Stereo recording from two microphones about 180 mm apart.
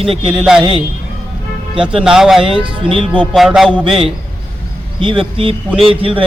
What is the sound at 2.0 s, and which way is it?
Speech, 5° right (ahead or behind).